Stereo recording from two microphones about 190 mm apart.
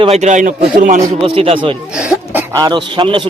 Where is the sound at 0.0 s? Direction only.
35° right (ahead or behind).